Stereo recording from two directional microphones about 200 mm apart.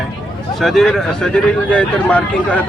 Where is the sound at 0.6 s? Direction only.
Centre (ahead or behind).